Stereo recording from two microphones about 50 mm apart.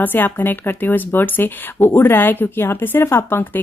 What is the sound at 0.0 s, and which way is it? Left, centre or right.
Speech, left.